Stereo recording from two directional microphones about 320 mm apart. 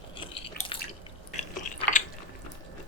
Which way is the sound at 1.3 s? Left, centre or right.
Left.